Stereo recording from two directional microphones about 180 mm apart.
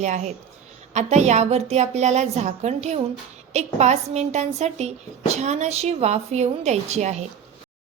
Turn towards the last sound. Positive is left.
turn(degrees=-40)  # may be behind; listen again after turning